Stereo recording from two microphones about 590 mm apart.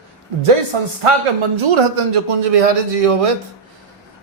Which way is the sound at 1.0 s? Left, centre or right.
Right.